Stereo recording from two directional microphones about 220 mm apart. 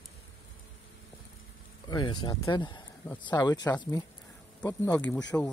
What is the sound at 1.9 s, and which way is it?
A man's voice, 20° left (ahead or behind).